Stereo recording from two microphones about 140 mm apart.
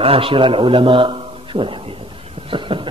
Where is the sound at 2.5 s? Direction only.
35° right (ahead or behind).